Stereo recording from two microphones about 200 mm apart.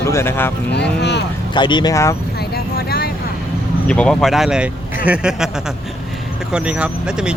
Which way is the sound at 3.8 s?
5° left (ahead or behind).